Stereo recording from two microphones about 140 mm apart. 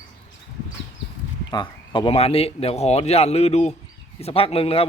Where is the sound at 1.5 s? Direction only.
35° left (ahead or behind).